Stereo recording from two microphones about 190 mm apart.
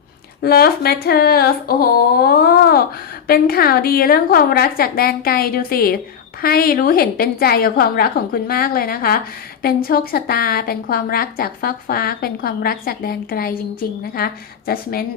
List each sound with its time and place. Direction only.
0.4 s a woman's voice: 55° left (ahead or behind)